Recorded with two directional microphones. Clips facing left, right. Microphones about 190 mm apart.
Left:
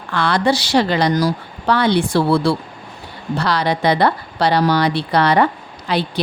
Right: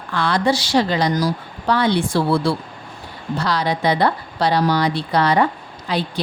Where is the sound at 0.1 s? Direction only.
70° left (ahead or behind).